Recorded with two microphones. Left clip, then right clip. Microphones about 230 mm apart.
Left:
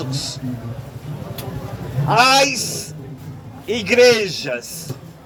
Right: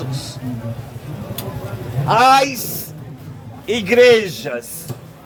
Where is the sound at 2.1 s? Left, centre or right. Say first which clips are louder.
Right 2 dB; left.